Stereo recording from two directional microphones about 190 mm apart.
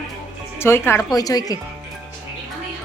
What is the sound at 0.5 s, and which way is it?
A woman's voice, 15° left (ahead or behind).